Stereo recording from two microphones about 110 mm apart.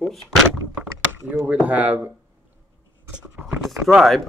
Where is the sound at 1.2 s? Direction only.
15° right (ahead or behind).